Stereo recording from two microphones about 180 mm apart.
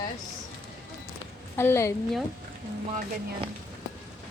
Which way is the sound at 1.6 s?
15° left (ahead or behind).